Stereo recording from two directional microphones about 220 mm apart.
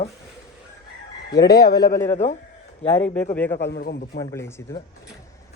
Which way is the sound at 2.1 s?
35° left (ahead or behind).